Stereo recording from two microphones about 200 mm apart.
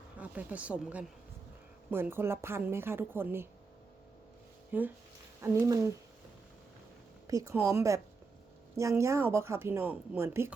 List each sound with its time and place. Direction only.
0.2 s a woman's voice: 5° right (ahead or behind)
4.7 s speech: 10° right (ahead or behind)
7.3 s speech: 15° right (ahead or behind)